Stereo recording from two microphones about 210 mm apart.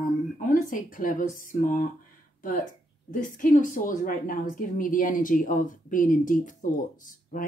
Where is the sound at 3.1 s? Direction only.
40° left (ahead or behind).